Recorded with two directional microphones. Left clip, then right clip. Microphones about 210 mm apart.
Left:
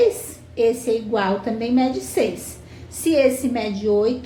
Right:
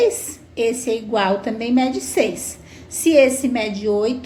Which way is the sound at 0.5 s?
30° right (ahead or behind).